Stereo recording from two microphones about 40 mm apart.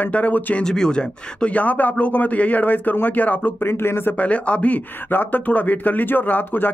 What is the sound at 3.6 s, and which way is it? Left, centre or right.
Speech, left.